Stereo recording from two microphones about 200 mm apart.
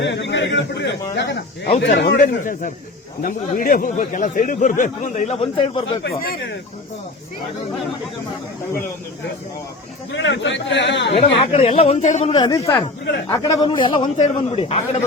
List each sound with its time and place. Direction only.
0.0 s a man's voice: 60° left (ahead or behind)
2.2 s speech: 40° left (ahead or behind)
5.4 s a man's voice: 25° left (ahead or behind)
6.0 s a man's voice: 60° left (ahead or behind)
10.1 s a man's voice: 65° left (ahead or behind)
11.1 s a man's voice: 25° left (ahead or behind)
12.3 s a man's voice: 20° left (ahead or behind)